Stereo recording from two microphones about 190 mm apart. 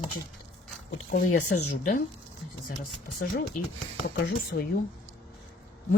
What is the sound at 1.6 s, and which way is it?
Speech, 40° left (ahead or behind).